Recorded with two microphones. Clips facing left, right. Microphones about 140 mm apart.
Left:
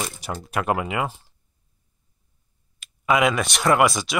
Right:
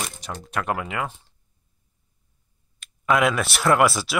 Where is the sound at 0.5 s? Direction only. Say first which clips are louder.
Left 3 dB; 10° left (ahead or behind).